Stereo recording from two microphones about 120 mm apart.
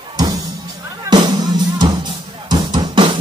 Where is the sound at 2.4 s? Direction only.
35° right (ahead or behind).